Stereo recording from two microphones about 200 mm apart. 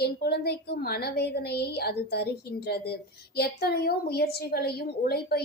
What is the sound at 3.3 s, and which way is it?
A woman's voice, 50° left (ahead or behind).